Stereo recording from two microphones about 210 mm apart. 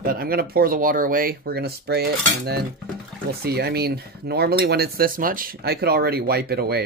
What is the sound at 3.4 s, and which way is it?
Speech, 45° right (ahead or behind).